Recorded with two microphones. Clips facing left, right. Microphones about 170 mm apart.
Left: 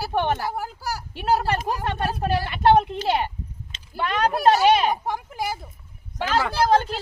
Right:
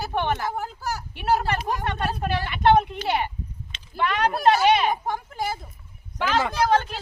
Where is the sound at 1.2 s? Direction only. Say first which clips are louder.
Left 1 dB; 35° left (ahead or behind).